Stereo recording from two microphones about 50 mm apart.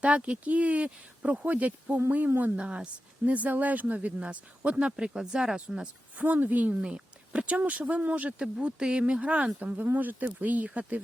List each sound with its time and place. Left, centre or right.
0.0 s speech: right
6.1 s a woman's voice: right
8.4 s speech: centre
9.6 s speech: right